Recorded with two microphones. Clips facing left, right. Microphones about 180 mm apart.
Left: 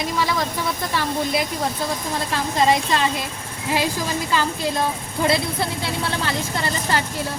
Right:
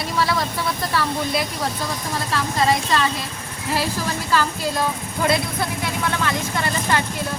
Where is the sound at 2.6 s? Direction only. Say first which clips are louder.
Left 2 dB; 20° left (ahead or behind).